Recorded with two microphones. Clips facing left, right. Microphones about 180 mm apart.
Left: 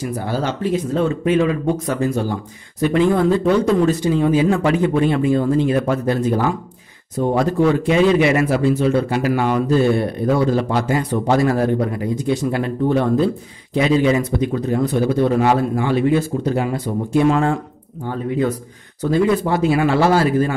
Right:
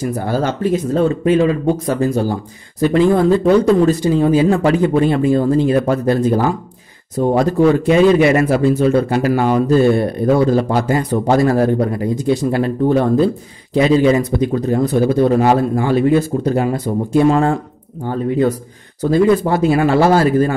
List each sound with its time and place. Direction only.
0.0 s a man's voice: 45° right (ahead or behind)